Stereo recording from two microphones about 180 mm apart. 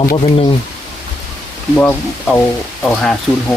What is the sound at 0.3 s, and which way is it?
Speech, 30° left (ahead or behind).